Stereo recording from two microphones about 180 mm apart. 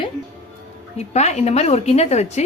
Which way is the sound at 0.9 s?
40° left (ahead or behind).